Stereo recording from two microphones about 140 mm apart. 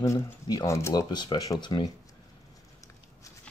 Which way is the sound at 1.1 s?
30° left (ahead or behind).